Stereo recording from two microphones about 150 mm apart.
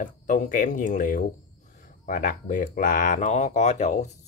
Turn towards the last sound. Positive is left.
turn(degrees=50)  # may be behind; listen again after turning